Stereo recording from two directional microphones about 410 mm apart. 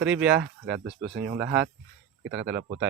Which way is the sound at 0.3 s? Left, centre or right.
Right.